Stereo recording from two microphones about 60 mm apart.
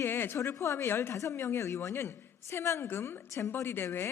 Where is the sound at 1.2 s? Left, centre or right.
Left.